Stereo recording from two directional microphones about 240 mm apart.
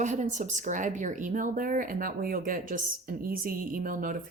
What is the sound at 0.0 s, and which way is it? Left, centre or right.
Speech, right.